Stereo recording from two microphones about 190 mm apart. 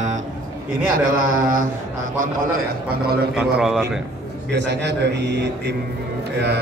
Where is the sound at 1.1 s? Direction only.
45° right (ahead or behind).